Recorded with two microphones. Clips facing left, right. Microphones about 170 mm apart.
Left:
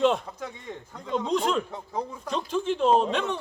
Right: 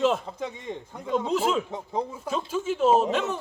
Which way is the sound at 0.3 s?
20° right (ahead or behind).